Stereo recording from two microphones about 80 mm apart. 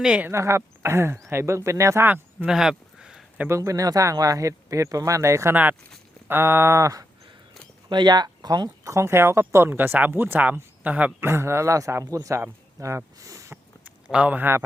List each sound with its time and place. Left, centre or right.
0.0 s speech: centre
0.3 s speech: right
2.0 s speech: right
2.5 s a sound: centre
3.5 s speech: right
7.9 s speech: right; by 11.1 s centre
11.2 s speech: right
14.1 s speech: centre